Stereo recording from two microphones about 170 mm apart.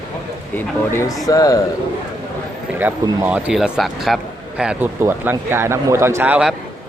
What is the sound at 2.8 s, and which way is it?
A man's voice, 10° right (ahead or behind).